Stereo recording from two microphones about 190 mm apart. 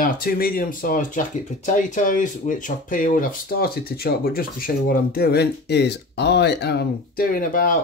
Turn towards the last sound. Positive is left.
turn(degrees=45)  # may be behind; listen again after turning